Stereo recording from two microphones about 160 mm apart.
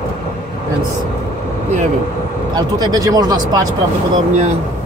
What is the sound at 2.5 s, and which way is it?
Speech, 25° right (ahead or behind).